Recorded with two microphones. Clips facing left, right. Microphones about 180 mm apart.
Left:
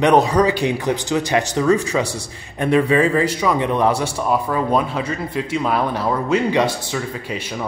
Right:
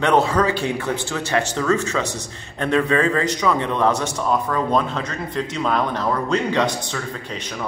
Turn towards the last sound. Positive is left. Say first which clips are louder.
# left 2 dB
turn(degrees=10)  # may be behind; listen again after turning